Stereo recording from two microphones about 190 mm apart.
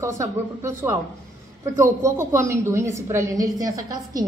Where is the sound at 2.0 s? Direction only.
15° right (ahead or behind).